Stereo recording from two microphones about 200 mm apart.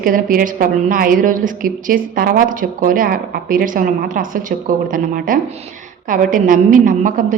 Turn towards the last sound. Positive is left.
turn(degrees=-40)  # may be behind; listen again after turning